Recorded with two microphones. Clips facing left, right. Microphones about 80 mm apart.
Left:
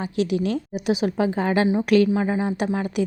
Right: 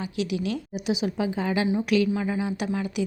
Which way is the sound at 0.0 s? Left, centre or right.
Left.